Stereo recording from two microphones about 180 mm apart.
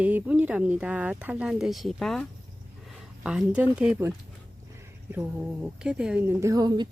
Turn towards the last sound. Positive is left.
turn(degrees=-20)  # may be behind; listen again after turning